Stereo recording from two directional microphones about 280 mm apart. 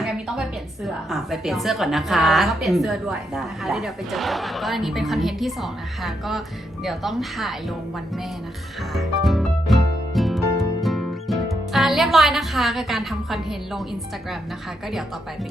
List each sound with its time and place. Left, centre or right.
0.0 s a sound: centre
0.9 s a woman's voice: centre
8.9 s music: centre
10.8 s speech: centre